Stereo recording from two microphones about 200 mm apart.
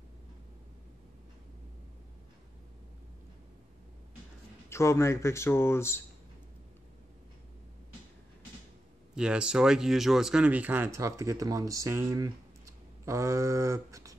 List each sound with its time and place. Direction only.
4.6 s speech: 15° left (ahead or behind)
9.1 s speech: 5° right (ahead or behind)